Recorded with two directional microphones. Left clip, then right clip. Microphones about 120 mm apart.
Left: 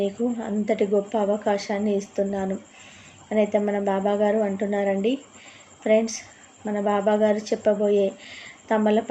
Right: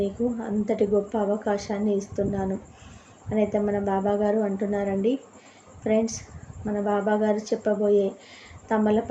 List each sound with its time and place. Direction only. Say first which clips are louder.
0.0 s a woman's voice: left 1 dB; 30° left (ahead or behind)